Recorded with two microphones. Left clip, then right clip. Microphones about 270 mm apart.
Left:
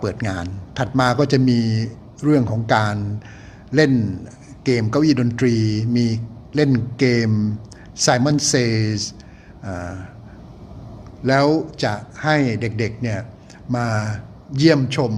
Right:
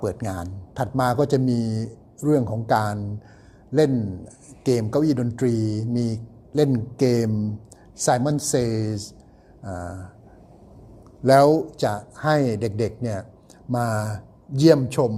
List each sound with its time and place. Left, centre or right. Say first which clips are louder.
0.0 s a man's voice: left 3 dB; centre
11.2 s a man's voice: right 2 dB; right